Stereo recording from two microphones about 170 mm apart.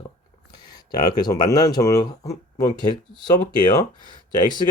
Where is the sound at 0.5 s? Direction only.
25° left (ahead or behind).